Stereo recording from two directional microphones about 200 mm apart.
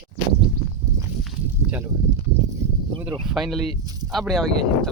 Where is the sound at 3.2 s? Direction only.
Centre (ahead or behind).